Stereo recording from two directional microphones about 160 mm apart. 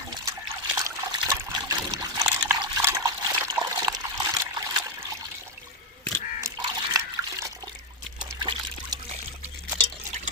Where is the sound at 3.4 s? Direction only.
20° right (ahead or behind).